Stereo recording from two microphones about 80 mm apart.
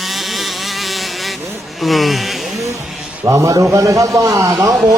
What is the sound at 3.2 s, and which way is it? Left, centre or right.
A man's voice, right.